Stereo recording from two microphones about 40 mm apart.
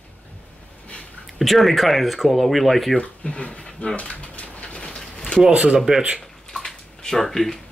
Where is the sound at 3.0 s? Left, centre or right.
Left.